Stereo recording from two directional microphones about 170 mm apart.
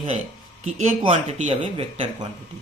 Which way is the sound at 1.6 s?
30° right (ahead or behind).